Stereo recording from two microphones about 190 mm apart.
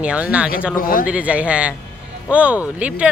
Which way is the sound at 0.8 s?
50° left (ahead or behind).